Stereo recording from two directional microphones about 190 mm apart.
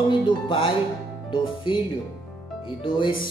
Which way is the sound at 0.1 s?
25° left (ahead or behind).